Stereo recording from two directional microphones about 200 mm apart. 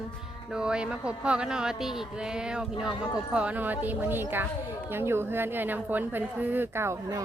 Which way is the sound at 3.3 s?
5° right (ahead or behind).